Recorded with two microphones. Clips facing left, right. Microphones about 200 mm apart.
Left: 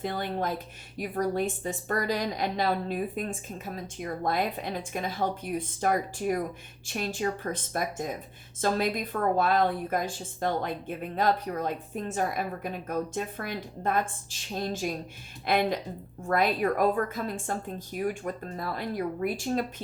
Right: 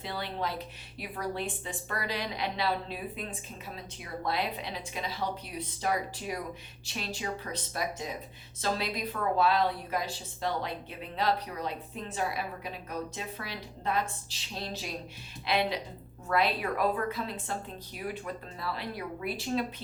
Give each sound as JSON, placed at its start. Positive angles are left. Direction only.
{"t": 0.0, "sound": "a woman's voice", "side_deg": 50}